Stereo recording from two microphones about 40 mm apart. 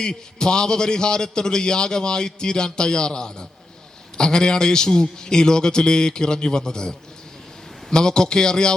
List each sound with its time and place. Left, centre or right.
0.0 s a man's voice: centre